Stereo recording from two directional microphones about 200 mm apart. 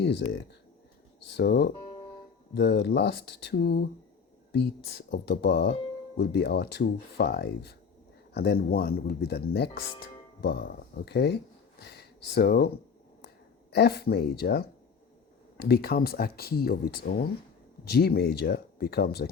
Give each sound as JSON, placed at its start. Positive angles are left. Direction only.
{"t": 0.0, "sound": "speech", "side_deg": 60}
{"t": 11.0, "sound": "speech", "side_deg": 55}